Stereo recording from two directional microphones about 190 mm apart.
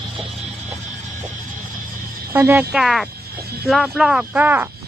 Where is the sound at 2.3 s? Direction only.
15° right (ahead or behind).